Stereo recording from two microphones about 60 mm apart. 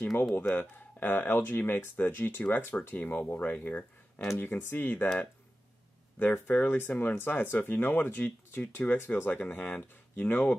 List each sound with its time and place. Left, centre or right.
0.4 s speech: left
6.1 s speech: left